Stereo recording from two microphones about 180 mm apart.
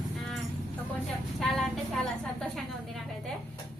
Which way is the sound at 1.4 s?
Centre (ahead or behind).